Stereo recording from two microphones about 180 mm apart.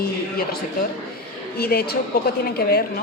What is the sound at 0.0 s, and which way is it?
A woman's voice, 55° left (ahead or behind).